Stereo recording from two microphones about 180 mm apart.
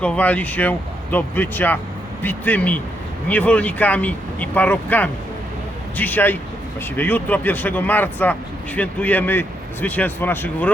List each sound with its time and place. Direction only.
0.0 s speech: 10° left (ahead or behind)